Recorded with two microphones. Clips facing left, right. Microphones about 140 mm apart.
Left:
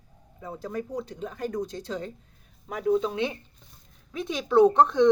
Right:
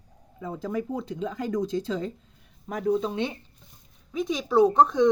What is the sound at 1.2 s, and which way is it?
Speech, 90° right.